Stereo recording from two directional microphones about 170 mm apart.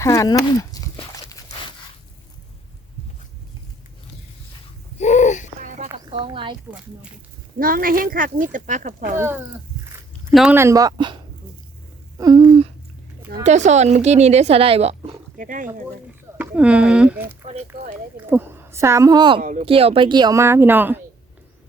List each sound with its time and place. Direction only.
0.0 s dog: 20° left (ahead or behind)
4.9 s a sound: 40° left (ahead or behind)
5.6 s a sound: 45° right (ahead or behind)
6.1 s a sound: 30° right (ahead or behind)
7.6 s speech: 55° right (ahead or behind)
9.1 s speech: 15° right (ahead or behind)
10.5 s speech: 15° right (ahead or behind)
12.1 s a sound: 25° right (ahead or behind)
13.4 s speech: 40° right (ahead or behind)
15.4 s speech: 50° right (ahead or behind)
16.4 s a woman's voice: 10° right (ahead or behind); by 19.4 s 25° right (ahead or behind)
19.4 s speech: 50° right (ahead or behind)
19.6 s speech: 35° right (ahead or behind); by 21.0 s 10° right (ahead or behind)